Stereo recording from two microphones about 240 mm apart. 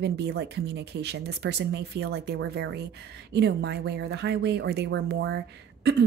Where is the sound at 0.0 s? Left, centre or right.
Right.